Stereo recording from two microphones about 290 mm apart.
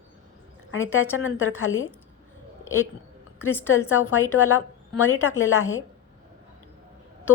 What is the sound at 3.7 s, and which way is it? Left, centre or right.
A woman's voice, left.